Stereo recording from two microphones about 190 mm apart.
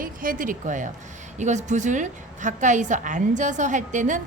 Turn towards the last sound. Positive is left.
turn(degrees=-40)  # may be behind; listen again after turning